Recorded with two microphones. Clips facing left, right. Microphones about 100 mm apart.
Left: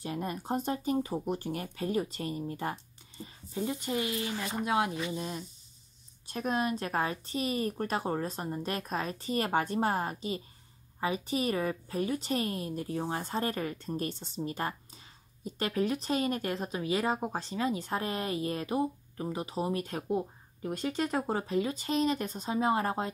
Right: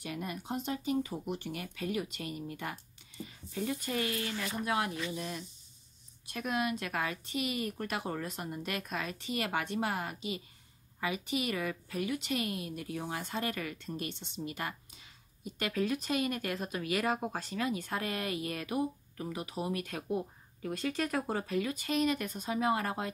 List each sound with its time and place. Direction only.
0.0 s speech: 35° left (ahead or behind)